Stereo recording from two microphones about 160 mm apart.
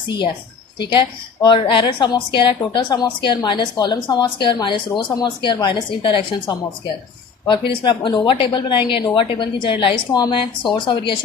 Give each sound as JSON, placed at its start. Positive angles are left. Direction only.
{"t": 0.8, "sound": "a woman's voice", "side_deg": 30}
{"t": 7.4, "sound": "a woman's voice", "side_deg": 30}